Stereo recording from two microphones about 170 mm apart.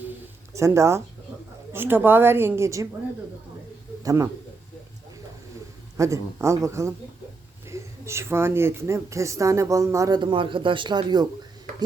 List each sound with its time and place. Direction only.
0.5 s a woman's voice: 15° right (ahead or behind)
4.0 s speech: 20° right (ahead or behind)
6.0 s a woman's voice: 15° right (ahead or behind)